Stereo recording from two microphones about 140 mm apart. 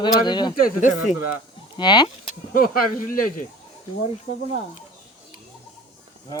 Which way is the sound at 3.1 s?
80° left.